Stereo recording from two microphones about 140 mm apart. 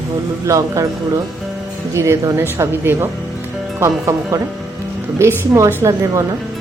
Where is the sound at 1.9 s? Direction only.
20° right (ahead or behind).